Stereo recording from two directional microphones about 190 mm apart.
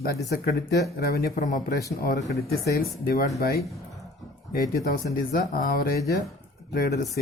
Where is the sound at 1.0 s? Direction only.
55° left (ahead or behind).